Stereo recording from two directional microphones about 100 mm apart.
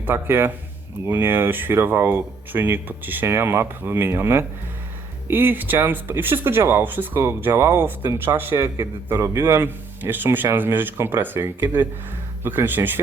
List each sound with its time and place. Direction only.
0.0 s speech: 20° right (ahead or behind)